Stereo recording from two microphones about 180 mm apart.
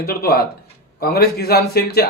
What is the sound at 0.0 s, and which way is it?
A man's voice, 60° left (ahead or behind).